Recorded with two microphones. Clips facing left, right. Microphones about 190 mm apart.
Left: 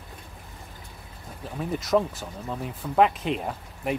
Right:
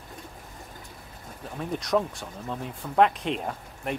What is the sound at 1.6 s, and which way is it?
Speech, 5° left (ahead or behind).